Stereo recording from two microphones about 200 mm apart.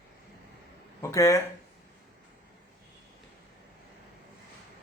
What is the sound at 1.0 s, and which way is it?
Speech, 15° left (ahead or behind).